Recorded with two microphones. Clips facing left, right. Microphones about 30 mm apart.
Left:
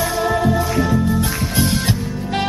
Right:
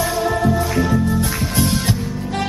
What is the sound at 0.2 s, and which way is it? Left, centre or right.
Music, centre.